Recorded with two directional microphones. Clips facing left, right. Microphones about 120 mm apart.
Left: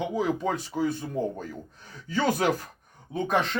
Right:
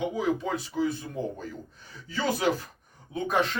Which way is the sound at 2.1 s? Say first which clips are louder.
Left 2 dB; 45° left (ahead or behind).